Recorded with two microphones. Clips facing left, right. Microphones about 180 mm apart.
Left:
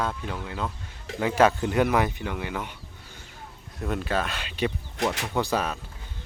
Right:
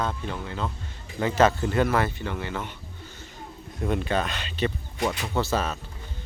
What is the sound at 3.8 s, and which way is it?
Speech, centre (ahead or behind).